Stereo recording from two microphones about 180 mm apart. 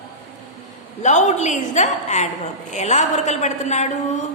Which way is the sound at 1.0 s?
40° left (ahead or behind).